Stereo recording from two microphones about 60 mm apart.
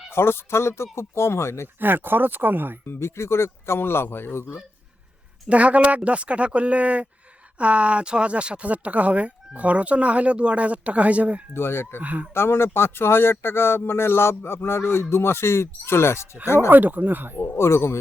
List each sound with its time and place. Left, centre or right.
0.1 s speech: left
1.8 s speech: right
2.8 s speech: left
5.5 s speech: right
11.5 s speech: left
11.9 s speech: right
12.3 s speech: left
16.6 s speech: right
17.5 s speech: left